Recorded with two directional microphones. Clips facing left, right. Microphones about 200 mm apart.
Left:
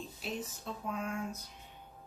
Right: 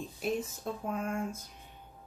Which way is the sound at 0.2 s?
50° right (ahead or behind).